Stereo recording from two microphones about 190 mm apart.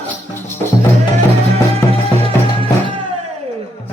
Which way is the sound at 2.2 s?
30° right (ahead or behind).